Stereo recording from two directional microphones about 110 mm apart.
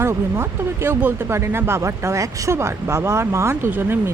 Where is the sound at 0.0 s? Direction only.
25° right (ahead or behind).